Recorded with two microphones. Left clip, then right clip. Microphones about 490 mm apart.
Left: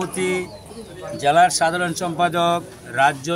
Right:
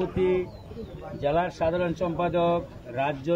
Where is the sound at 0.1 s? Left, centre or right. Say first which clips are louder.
Left 2 dB; right.